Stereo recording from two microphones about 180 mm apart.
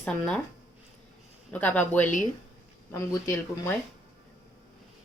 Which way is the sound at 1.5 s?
10° left (ahead or behind).